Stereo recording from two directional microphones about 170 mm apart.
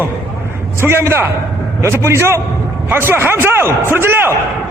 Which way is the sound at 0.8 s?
15° right (ahead or behind).